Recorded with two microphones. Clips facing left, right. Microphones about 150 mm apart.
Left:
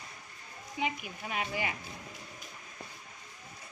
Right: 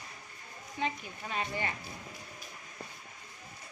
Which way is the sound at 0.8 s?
15° left (ahead or behind).